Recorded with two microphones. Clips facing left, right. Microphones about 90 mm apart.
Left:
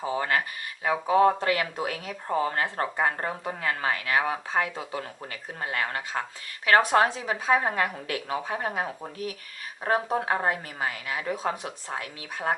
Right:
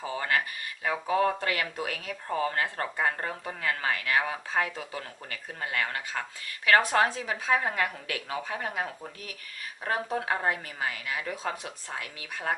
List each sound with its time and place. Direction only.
0.0 s speech: 25° left (ahead or behind)